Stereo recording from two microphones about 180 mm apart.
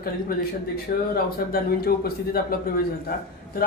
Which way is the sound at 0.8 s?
55° left (ahead or behind).